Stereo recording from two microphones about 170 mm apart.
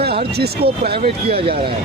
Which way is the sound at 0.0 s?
70° right (ahead or behind).